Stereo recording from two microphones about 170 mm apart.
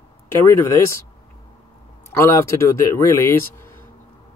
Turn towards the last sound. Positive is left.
turn(degrees=15)  # may be behind; listen again after turning